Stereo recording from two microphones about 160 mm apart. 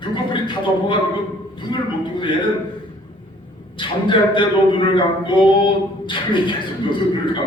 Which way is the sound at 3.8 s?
30° left (ahead or behind).